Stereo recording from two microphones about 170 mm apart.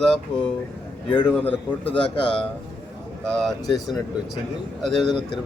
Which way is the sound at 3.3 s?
Centre (ahead or behind).